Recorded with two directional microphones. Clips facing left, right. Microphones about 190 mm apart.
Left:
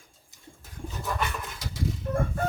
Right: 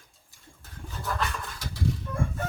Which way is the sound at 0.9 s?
20° left (ahead or behind).